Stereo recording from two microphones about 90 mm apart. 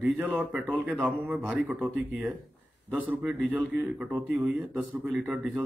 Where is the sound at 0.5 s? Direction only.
20° right (ahead or behind).